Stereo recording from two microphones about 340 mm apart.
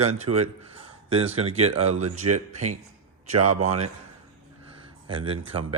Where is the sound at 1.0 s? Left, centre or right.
Centre.